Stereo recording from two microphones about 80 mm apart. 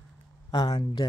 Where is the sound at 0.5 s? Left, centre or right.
Left.